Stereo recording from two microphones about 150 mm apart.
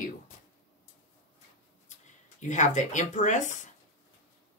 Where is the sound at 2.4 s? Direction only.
55° left (ahead or behind).